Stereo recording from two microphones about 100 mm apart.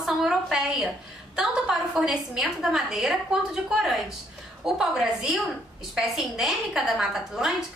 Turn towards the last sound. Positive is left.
turn(degrees=-5)  # may be behind; listen again after turning